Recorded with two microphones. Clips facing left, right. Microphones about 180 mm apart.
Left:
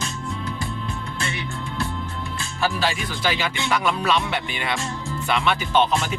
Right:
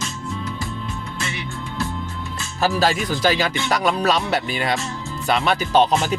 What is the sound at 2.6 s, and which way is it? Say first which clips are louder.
Speech: right 5 dB; 40° right (ahead or behind).